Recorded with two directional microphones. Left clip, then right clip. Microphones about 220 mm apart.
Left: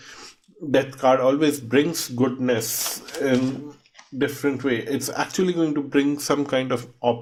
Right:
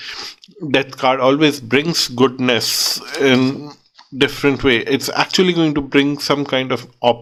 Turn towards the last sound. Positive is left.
turn(degrees=-20)  # may be behind; listen again after turning